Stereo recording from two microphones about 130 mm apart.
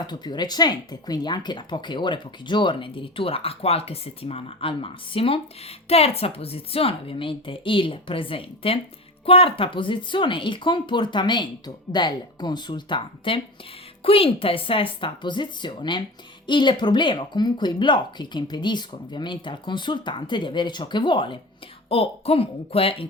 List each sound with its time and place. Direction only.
0.1 s speech: 35° left (ahead or behind)